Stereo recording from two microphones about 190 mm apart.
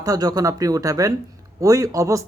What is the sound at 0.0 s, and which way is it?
Speech, 20° right (ahead or behind).